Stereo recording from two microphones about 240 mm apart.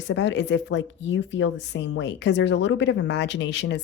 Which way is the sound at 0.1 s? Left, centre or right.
Left.